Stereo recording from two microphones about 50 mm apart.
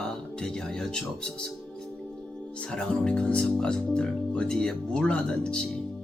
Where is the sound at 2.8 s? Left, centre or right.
Left.